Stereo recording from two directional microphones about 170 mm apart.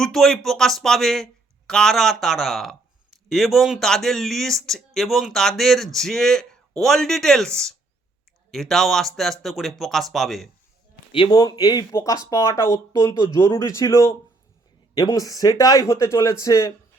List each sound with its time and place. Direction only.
0.0 s speech: centre (ahead or behind)
11.1 s speech: 25° left (ahead or behind)